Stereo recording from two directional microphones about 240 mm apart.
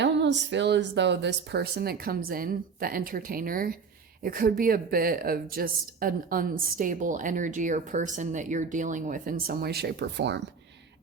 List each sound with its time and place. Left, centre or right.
0.0 s a woman's voice: right